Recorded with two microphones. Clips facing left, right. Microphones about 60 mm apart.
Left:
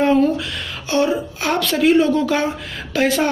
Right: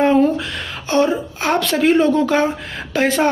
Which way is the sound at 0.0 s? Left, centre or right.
Right.